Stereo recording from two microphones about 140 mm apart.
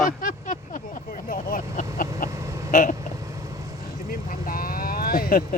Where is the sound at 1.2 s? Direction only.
85° left.